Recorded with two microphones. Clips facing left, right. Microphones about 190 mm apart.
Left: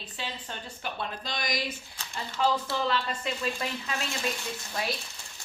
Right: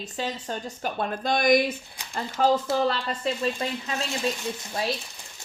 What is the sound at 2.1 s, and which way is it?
Speech, 45° right (ahead or behind).